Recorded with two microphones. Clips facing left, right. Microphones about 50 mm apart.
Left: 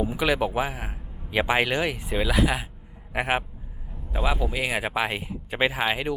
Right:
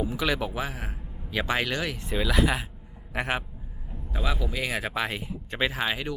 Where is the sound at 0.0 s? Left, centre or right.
Centre.